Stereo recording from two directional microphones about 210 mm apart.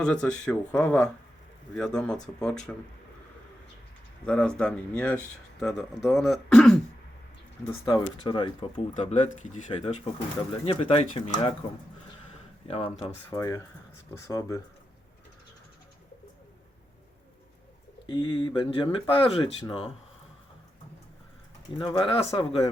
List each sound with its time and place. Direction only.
0.0 s speech: 5° left (ahead or behind)
4.3 s speech: 5° left (ahead or behind)
7.7 s speech: 20° left (ahead or behind)
12.6 s speech: 25° left (ahead or behind)
13.3 s speech: 15° left (ahead or behind)
18.0 s speech: 20° left (ahead or behind)
21.8 s speech: 20° left (ahead or behind)